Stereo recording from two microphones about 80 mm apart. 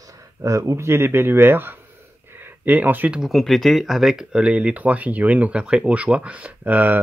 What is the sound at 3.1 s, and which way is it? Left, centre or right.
Speech, centre.